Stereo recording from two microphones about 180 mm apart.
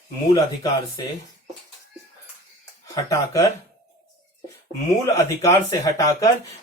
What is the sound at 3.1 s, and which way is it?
Speech, 20° left (ahead or behind).